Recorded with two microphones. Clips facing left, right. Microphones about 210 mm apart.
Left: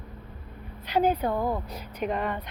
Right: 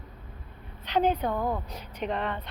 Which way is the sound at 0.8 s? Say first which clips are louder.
Left 1 dB; 10° left (ahead or behind).